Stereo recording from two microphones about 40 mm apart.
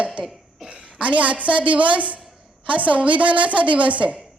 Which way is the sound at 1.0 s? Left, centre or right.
Right.